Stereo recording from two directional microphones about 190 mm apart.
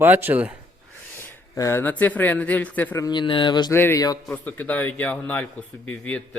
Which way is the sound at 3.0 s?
25° left (ahead or behind).